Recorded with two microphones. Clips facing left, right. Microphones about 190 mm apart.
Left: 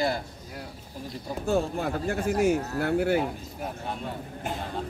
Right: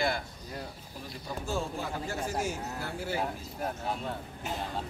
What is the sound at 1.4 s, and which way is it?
Speech, 60° left (ahead or behind).